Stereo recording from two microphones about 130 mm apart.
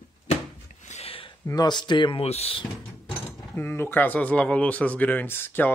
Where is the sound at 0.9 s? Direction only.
50° left (ahead or behind).